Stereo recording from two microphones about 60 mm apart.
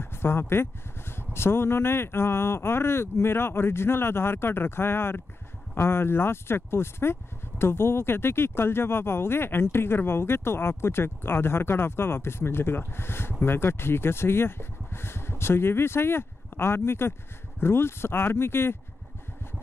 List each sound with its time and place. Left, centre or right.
0.0 s speech: left